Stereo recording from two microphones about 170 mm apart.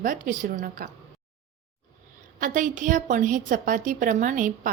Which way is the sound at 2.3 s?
50° right (ahead or behind).